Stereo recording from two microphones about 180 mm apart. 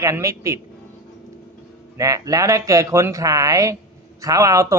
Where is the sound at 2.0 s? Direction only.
20° right (ahead or behind).